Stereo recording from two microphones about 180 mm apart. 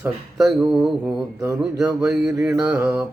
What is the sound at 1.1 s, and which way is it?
Mantra, 15° right (ahead or behind).